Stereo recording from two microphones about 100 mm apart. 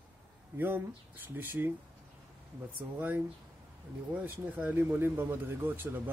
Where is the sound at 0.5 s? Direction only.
20° right (ahead or behind).